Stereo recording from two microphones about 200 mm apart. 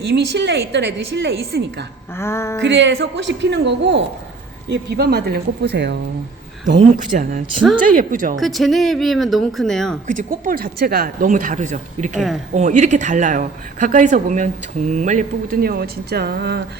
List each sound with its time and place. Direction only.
0.0 s a woman's voice: 60° right (ahead or behind)
2.1 s a sound: 15° left (ahead or behind)
2.6 s a woman's voice: 65° right (ahead or behind)
6.7 s speech: 40° right (ahead or behind)
8.4 s speech: centre (ahead or behind)
10.1 s speech: 40° right (ahead or behind)